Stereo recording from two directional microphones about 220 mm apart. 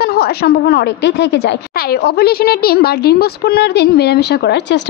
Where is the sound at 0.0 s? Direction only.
45° left (ahead or behind).